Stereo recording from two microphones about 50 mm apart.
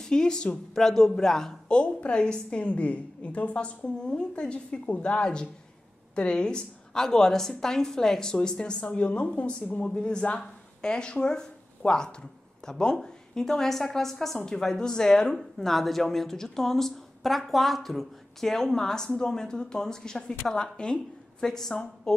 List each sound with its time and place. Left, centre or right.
0.0 s a woman's voice: centre
1.8 s a woman's voice: left
15.3 s a woman's voice: centre